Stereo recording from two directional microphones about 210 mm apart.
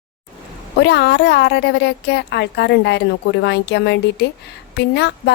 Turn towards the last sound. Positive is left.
turn(degrees=55)  # may be behind; listen again after turning